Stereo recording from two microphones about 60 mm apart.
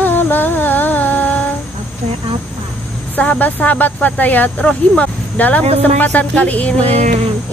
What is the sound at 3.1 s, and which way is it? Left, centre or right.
Speech, left.